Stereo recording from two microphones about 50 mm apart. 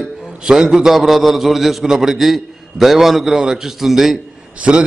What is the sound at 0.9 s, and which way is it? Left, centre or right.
A man's voice, centre.